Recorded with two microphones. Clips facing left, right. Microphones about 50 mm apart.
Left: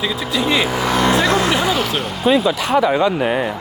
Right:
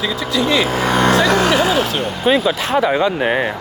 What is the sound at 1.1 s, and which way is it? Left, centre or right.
Speech, right.